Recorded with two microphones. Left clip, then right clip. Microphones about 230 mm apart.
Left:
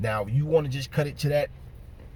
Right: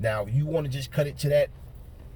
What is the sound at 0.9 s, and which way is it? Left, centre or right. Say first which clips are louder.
Speech: right 1 dB; centre.